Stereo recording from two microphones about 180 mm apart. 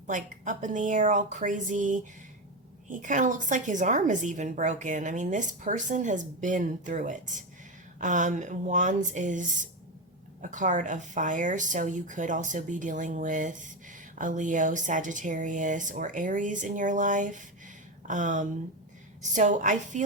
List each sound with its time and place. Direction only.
0.1 s speech: 45° right (ahead or behind)